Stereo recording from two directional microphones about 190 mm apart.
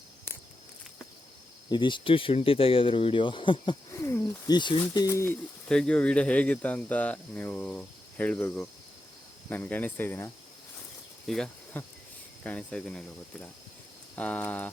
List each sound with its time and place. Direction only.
1.7 s speech: 25° left (ahead or behind)
3.9 s speech: 15° left (ahead or behind)
5.6 s speech: 5° left (ahead or behind)